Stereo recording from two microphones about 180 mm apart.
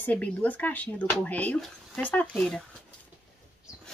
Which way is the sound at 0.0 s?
10° left (ahead or behind).